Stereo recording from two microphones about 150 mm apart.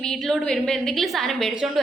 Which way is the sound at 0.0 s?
5° left (ahead or behind).